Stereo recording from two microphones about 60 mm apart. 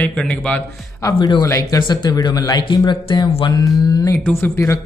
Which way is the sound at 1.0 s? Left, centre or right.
Left.